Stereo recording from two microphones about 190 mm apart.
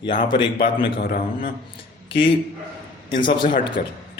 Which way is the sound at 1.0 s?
50° left (ahead or behind).